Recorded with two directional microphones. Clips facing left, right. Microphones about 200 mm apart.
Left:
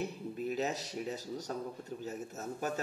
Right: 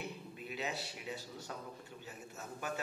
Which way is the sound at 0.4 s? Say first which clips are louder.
Left 7 dB; 40° left (ahead or behind).